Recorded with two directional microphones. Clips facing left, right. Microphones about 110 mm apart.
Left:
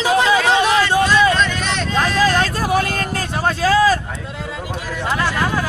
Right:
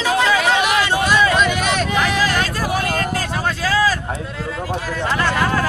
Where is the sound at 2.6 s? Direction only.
40° left (ahead or behind).